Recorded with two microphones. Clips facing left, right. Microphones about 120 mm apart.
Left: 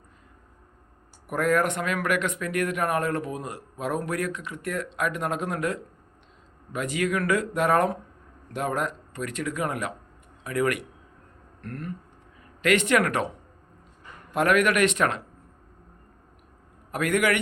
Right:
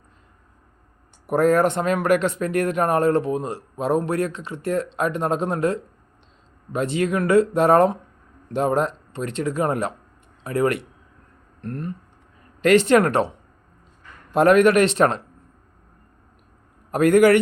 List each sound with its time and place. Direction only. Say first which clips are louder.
1.3 s speech: right 6 dB; 30° right (ahead or behind)
16.9 s speech: right 10 dB; 35° right (ahead or behind)